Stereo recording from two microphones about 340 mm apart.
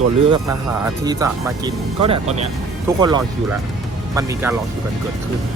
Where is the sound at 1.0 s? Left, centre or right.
Centre.